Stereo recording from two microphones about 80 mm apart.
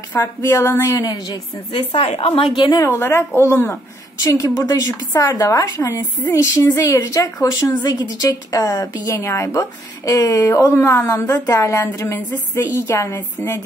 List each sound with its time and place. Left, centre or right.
0.1 s a woman's voice: left
1.9 s a woman's voice: left
2.8 s a woman's voice: left
4.2 s a woman's voice: left